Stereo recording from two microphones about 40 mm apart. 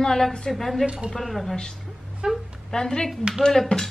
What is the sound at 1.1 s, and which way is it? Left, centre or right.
Speech, centre.